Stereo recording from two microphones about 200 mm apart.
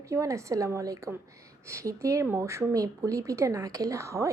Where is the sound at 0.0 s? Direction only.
15° right (ahead or behind).